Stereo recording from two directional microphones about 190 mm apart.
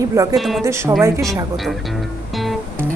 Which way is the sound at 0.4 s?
Centre (ahead or behind).